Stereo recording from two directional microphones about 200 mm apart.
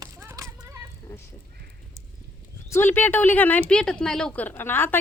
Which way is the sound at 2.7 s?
10° left (ahead or behind).